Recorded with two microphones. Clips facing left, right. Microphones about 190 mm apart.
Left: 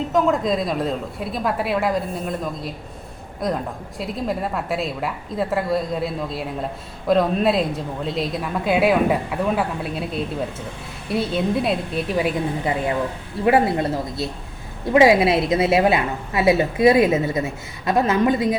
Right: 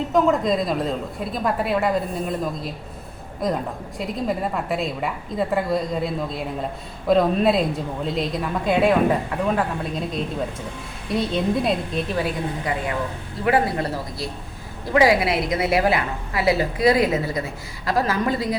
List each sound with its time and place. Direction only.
0.1 s a woman's voice: centre (ahead or behind)
11.1 s a woman's voice: 5° left (ahead or behind)
12.1 s a woman's voice: 15° left (ahead or behind)